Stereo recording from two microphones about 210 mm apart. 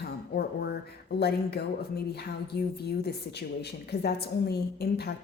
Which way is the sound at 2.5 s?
50° left (ahead or behind).